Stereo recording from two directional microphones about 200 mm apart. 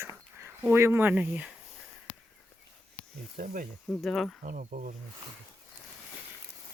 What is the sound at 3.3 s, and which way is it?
Speech, 40° right (ahead or behind).